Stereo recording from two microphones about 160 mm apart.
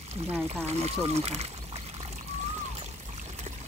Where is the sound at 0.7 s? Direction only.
40° right (ahead or behind).